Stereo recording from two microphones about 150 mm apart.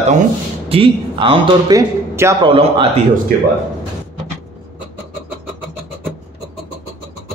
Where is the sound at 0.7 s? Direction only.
35° right (ahead or behind).